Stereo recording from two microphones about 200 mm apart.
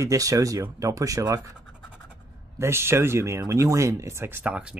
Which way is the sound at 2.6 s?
10° right (ahead or behind).